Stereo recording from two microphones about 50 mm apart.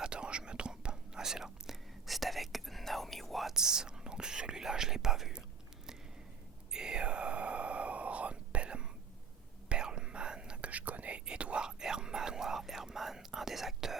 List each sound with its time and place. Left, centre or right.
0.0 s whispering: centre
3.5 s whispering: centre
6.7 s whispering: centre
10.7 s whispering: right; by 14.0 s centre